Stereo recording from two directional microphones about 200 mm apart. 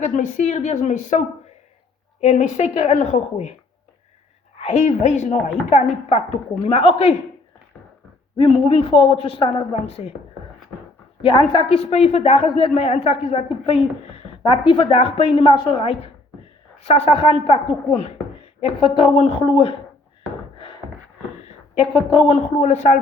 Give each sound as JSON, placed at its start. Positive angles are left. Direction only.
{"t": 0.0, "sound": "a woman's voice", "side_deg": 40}
{"t": 2.2, "sound": "a woman's voice", "side_deg": 35}
{"t": 4.5, "sound": "a woman's voice", "side_deg": 35}
{"t": 8.4, "sound": "a woman's voice", "side_deg": 30}
{"t": 11.2, "sound": "a woman's voice", "side_deg": 25}
{"t": 22.1, "sound": "a woman's voice", "side_deg": 30}